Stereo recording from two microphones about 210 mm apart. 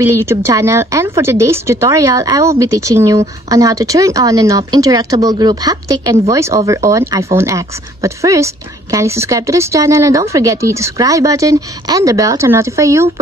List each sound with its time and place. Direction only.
0.0 s a woman's voice: 15° right (ahead or behind)